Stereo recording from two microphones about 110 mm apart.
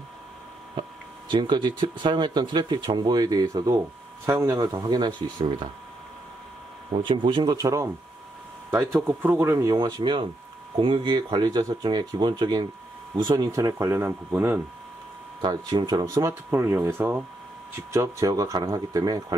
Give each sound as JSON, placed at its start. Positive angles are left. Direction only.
{"t": 1.3, "sound": "speech", "side_deg": -45}
{"t": 7.0, "sound": "speech", "side_deg": -45}
{"t": 9.9, "sound": "speech", "side_deg": -45}
{"t": 13.5, "sound": "speech", "side_deg": -30}
{"t": 15.4, "sound": "speech", "side_deg": -40}
{"t": 16.3, "sound": "speech", "side_deg": -20}